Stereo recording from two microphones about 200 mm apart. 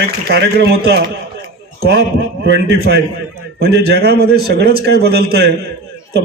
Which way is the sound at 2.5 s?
55° right (ahead or behind).